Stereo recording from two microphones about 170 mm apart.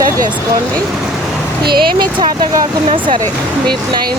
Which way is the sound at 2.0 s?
25° right (ahead or behind).